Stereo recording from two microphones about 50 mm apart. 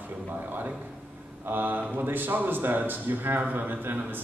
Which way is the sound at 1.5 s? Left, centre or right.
Right.